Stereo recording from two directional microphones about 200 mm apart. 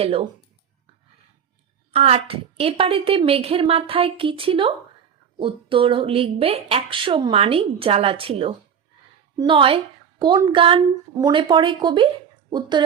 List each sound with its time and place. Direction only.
0.0 s a woman's voice: 30° right (ahead or behind)
1.9 s a woman's voice: 30° right (ahead or behind)